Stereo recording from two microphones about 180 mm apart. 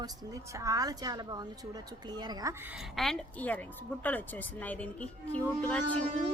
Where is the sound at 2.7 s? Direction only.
Centre (ahead or behind).